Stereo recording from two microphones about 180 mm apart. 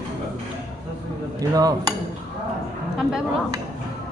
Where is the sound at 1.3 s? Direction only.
20° right (ahead or behind).